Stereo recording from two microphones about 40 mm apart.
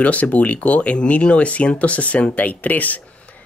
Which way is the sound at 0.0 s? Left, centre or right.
Left.